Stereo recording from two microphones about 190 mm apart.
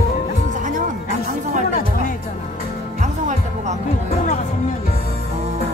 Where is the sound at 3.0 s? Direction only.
40° right (ahead or behind).